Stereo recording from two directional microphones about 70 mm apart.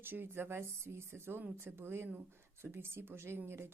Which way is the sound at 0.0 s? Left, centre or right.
Right.